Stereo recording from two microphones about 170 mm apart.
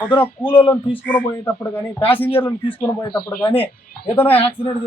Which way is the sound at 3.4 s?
10° left (ahead or behind).